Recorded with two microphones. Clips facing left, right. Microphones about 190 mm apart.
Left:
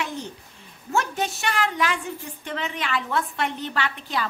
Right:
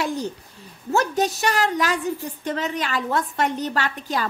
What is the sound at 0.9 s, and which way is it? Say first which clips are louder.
A woman's voice: right 5 dB; 40° right (ahead or behind).